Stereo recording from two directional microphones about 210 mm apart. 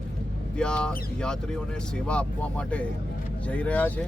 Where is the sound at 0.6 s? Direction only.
5° left (ahead or behind).